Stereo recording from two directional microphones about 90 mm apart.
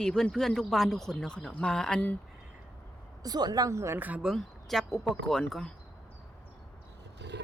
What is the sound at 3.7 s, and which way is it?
Speech, 30° right (ahead or behind).